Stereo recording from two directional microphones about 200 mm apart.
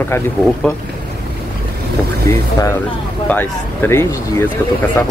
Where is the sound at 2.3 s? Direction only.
15° left (ahead or behind).